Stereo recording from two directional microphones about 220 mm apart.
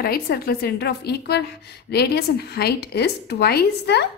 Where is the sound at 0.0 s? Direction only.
45° left (ahead or behind).